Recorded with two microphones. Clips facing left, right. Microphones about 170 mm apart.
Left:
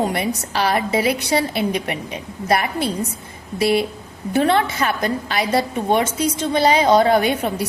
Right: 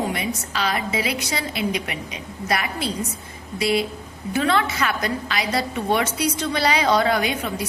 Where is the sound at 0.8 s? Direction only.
50° left (ahead or behind).